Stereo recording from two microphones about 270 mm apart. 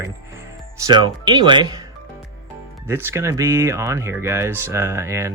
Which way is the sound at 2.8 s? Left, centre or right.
Centre.